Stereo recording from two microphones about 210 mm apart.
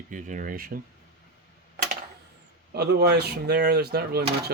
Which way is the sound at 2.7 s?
50° right (ahead or behind).